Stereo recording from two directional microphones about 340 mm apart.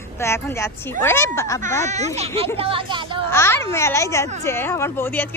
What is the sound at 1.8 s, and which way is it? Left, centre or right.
Speech, centre.